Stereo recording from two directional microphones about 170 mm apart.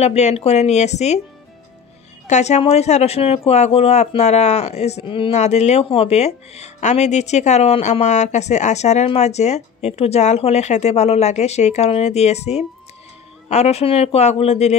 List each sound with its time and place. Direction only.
0.0 s speech: 40° left (ahead or behind)
2.2 s speech: 40° left (ahead or behind)